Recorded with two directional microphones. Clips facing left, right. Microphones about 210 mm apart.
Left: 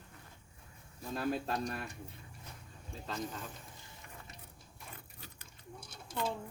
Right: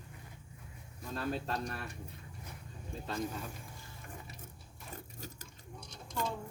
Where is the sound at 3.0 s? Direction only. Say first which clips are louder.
Right 2 dB; 10° right (ahead or behind).